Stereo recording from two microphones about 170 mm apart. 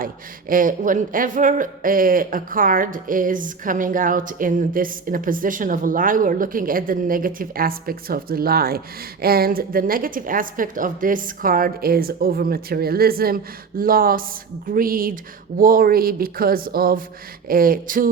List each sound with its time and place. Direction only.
0.0 s a woman's voice: 55° right (ahead or behind)